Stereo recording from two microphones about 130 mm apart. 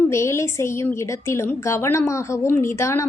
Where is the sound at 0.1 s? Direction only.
20° left (ahead or behind).